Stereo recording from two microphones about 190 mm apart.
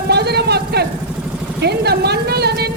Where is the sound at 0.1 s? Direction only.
60° right (ahead or behind).